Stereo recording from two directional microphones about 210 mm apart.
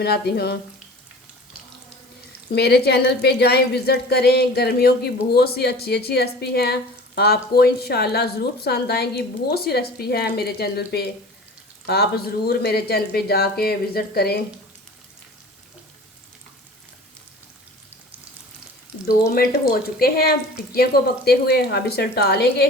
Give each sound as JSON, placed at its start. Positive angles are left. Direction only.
{"t": 0.0, "sound": "a woman's voice", "side_deg": 50}
{"t": 2.5, "sound": "a woman's voice", "side_deg": 50}
{"t": 19.0, "sound": "a woman's voice", "side_deg": 45}